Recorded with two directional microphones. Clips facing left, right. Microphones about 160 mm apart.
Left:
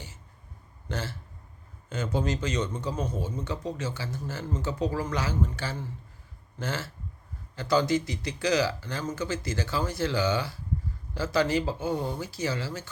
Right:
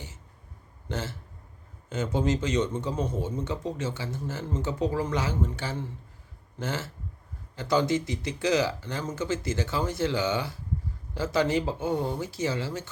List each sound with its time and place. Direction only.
0.9 s a man's voice: 20° right (ahead or behind)